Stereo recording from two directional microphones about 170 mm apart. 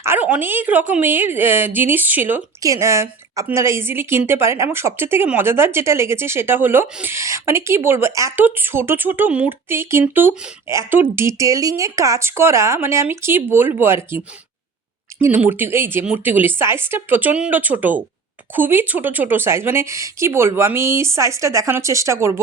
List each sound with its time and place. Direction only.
0.0 s a woman's voice: 10° right (ahead or behind)
15.2 s a woman's voice: 10° right (ahead or behind)